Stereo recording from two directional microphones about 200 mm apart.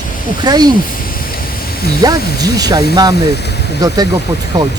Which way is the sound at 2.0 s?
20° right (ahead or behind).